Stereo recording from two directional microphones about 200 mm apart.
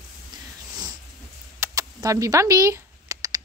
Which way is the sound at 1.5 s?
15° right (ahead or behind).